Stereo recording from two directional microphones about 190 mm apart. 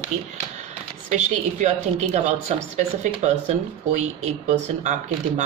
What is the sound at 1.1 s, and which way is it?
Speech, 35° right (ahead or behind).